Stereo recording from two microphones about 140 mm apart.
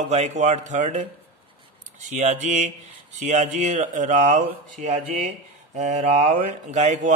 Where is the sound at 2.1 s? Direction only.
55° right (ahead or behind).